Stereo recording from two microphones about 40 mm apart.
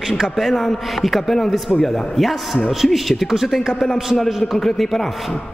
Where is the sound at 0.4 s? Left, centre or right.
Centre.